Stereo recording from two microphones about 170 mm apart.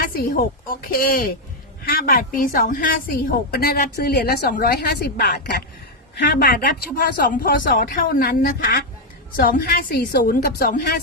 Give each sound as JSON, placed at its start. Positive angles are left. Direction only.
{"t": 0.0, "sound": "a woman's voice", "side_deg": 60}